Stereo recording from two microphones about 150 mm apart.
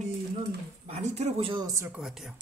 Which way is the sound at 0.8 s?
50° right (ahead or behind).